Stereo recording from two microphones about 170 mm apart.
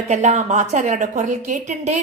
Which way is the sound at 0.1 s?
40° right (ahead or behind).